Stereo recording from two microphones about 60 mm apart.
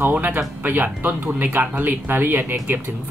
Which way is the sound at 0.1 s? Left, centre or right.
Right.